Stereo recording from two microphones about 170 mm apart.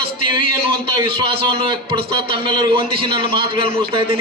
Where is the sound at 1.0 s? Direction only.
30° right (ahead or behind).